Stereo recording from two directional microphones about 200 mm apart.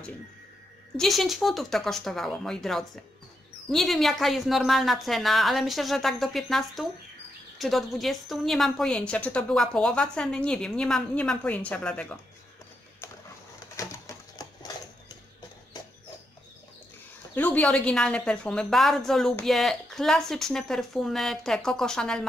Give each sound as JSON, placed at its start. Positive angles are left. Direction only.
{"t": 0.9, "sound": "a woman's voice", "side_deg": 0}
{"t": 13.7, "sound": "a sound", "side_deg": 15}
{"t": 17.4, "sound": "a woman's voice", "side_deg": 5}